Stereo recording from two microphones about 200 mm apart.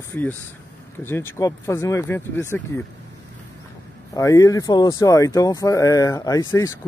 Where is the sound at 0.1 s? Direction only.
10° left (ahead or behind).